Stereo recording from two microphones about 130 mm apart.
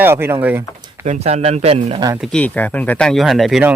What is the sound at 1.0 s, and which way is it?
Speech, 60° right (ahead or behind).